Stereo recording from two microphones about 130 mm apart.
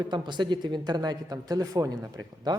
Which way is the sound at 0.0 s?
35° right (ahead or behind).